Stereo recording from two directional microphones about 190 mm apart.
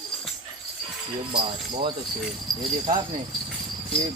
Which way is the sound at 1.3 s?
25° right (ahead or behind).